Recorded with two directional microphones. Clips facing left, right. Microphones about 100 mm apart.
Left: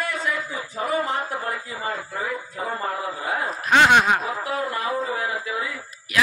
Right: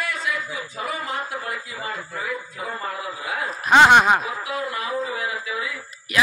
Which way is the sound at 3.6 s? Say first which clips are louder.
Right 3 dB; 15° right (ahead or behind).